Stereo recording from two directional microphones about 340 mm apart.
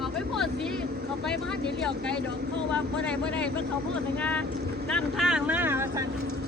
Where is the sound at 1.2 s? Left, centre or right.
Centre.